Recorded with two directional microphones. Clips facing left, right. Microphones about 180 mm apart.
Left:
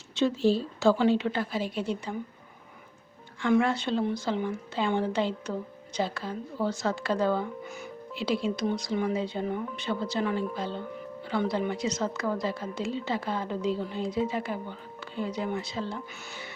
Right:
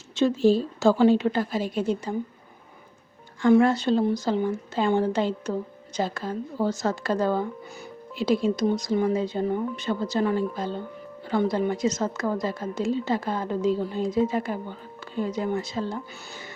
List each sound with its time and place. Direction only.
0.2 s a woman's voice: 45° right (ahead or behind)
3.4 s a woman's voice: 40° right (ahead or behind)